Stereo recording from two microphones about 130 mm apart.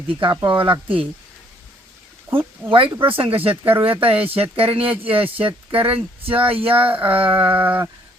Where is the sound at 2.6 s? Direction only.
40° right (ahead or behind).